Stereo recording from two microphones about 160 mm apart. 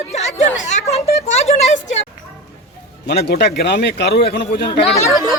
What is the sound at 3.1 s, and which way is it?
Speech, 90° left.